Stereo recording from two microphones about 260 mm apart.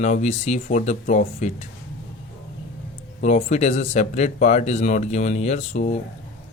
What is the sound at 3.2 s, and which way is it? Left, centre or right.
Speech, left.